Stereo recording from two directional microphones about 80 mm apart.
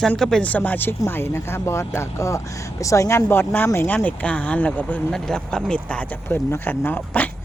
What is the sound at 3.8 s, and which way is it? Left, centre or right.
Speech, centre.